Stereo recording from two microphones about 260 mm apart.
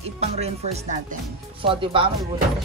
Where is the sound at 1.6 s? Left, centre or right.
Centre.